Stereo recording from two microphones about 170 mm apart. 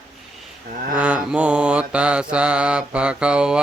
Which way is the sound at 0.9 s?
5° right (ahead or behind).